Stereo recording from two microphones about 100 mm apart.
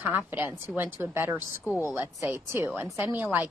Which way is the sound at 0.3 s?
20° right (ahead or behind).